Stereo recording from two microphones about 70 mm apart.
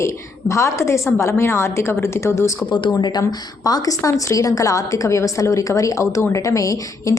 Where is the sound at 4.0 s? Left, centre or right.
Left.